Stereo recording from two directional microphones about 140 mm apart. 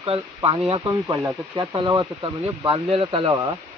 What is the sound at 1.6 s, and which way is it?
Speech, 30° right (ahead or behind).